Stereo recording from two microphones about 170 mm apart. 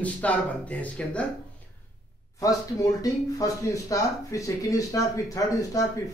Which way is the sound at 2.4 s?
20° left (ahead or behind).